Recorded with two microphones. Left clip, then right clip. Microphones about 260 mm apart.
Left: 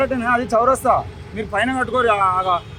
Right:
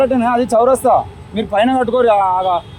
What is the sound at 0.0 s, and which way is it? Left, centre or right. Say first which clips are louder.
Speech: right 5 dB; right.